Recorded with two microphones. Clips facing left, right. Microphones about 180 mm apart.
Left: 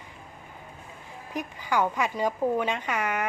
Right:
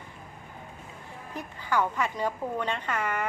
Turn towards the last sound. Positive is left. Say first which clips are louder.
# left 2 dB
turn(degrees=15)  # may be behind; listen again after turning